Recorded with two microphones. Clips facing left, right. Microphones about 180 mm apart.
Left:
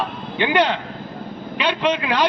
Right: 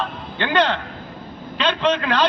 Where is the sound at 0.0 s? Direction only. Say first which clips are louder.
Left 3 dB; 15° left (ahead or behind).